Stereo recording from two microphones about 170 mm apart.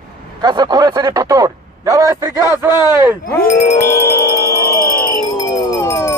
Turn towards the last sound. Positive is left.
turn(degrees=15)  # may be behind; listen again after turning